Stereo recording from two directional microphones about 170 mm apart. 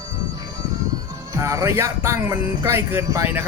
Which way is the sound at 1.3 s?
20° right (ahead or behind).